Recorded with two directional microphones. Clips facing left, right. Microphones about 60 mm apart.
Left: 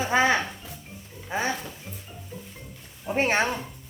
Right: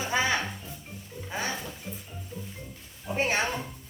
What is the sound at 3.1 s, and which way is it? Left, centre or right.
Speech, left.